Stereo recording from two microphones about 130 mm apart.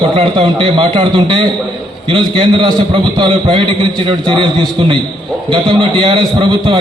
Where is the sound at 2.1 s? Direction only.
40° right (ahead or behind).